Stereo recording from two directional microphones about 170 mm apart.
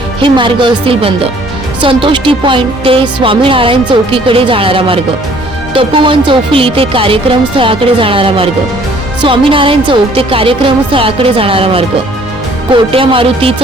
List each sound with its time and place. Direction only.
0.2 s speech: 30° right (ahead or behind)